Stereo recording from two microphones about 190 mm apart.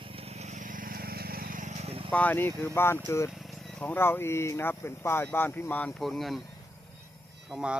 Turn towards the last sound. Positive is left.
turn(degrees=-5)  # may be behind; listen again after turning